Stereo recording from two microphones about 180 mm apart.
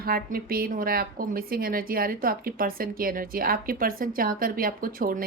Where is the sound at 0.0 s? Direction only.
55° right (ahead or behind).